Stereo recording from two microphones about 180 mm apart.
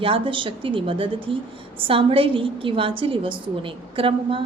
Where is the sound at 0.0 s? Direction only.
30° right (ahead or behind).